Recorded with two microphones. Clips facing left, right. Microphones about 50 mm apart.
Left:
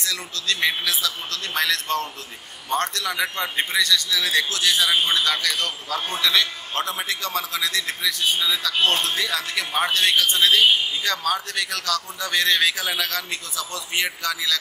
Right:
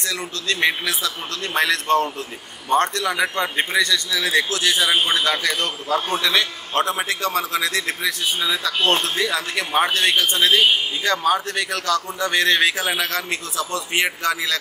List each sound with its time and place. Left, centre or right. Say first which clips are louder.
0.0 s a man's voice: right 2 dB; right
6.7 s a man's voice: right 5 dB; right
9.1 s a man's voice: right 3 dB; centre; by 14.6 s right